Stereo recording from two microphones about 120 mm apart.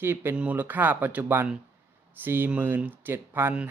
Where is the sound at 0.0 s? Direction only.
20° right (ahead or behind).